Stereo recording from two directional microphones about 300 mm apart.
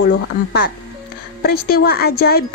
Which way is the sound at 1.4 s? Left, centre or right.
Left.